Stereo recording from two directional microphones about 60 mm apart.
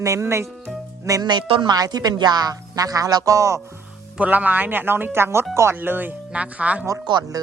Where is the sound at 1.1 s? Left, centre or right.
Right.